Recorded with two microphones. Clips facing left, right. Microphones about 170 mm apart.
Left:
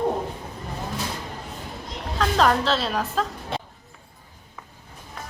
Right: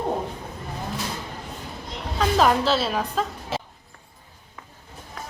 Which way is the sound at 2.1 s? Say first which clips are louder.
Right 1 dB; 5° right (ahead or behind).